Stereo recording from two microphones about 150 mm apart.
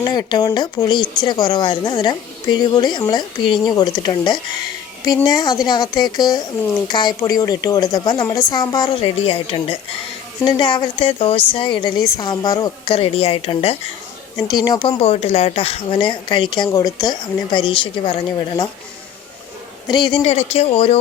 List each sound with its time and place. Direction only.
0.0 s speech: 25° left (ahead or behind)
9.2 s a woman's voice: 40° left (ahead or behind)
12.9 s a woman's voice: 40° left (ahead or behind)
14.4 s speech: 30° left (ahead or behind)
15.0 s a woman's voice: 45° left (ahead or behind)
19.9 s a woman's voice: 30° left (ahead or behind)
20.3 s a woman's voice: 45° left (ahead or behind)